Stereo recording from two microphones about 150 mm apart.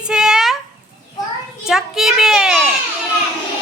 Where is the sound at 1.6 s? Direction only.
5° right (ahead or behind).